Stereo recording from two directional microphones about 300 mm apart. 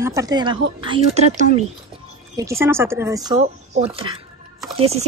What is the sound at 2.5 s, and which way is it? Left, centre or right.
A woman's voice, centre.